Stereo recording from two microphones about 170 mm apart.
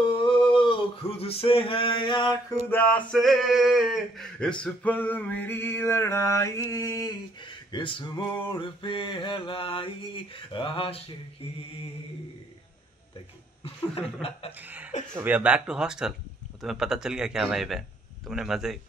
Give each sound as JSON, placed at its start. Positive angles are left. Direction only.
{"t": 0.0, "sound": "male singing", "side_deg": 30}
{"t": 2.7, "sound": "male singing", "side_deg": 10}
{"t": 8.5, "sound": "mantra", "side_deg": 30}
{"t": 13.9, "sound": "mantra", "side_deg": 35}
{"t": 14.6, "sound": "speech", "side_deg": -10}